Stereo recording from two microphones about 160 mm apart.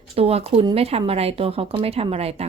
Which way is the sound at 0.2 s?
40° right (ahead or behind).